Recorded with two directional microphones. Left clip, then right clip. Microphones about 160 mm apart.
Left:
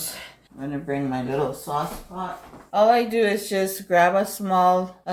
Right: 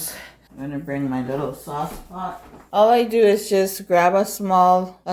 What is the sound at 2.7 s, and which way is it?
Speech, 50° right (ahead or behind).